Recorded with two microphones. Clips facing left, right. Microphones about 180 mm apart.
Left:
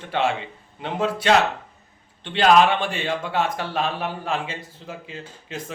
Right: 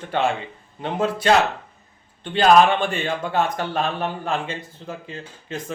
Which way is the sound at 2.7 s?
45° right (ahead or behind).